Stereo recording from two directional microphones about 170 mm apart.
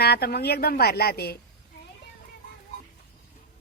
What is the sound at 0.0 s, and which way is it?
A woman's voice, 65° left (ahead or behind).